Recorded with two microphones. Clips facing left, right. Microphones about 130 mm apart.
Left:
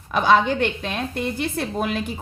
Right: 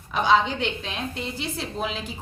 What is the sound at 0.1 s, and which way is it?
A woman's voice, 55° left (ahead or behind).